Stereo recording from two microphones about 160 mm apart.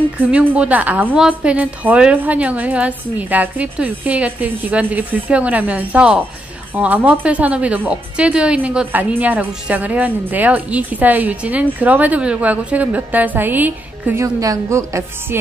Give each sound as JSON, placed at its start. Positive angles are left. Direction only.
{"t": 0.2, "sound": "speech", "side_deg": -10}